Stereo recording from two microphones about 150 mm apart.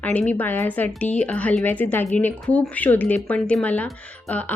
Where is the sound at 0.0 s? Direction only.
10° left (ahead or behind).